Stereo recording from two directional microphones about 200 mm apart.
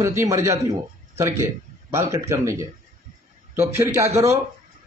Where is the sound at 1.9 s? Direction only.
15° right (ahead or behind).